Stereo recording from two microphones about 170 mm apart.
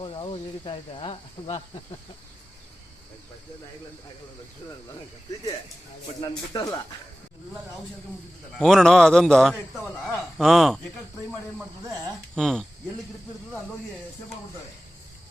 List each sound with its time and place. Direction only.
0.0 s speech: 30° left (ahead or behind)
6.5 s speech: 25° left (ahead or behind)
8.5 s a man's voice: centre (ahead or behind)
12.3 s a man's voice: 5° left (ahead or behind)